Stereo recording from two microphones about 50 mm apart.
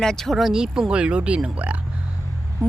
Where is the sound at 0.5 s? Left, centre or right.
Centre; by 1.8 s right.